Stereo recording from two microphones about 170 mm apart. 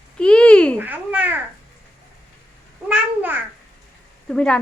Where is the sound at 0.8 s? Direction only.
10° right (ahead or behind).